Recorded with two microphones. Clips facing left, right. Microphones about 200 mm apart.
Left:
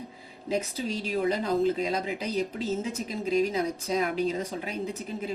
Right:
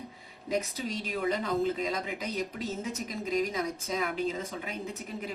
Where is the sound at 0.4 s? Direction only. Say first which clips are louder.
Left 2 dB; 30° left (ahead or behind).